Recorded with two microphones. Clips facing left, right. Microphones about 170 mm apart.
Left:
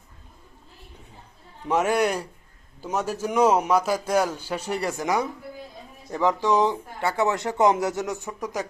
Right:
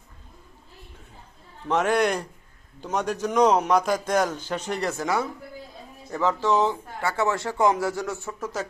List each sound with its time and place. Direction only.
1.6 s speech: 10° left (ahead or behind)